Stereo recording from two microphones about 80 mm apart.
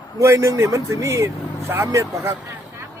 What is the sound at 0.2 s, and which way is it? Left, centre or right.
Speech, right.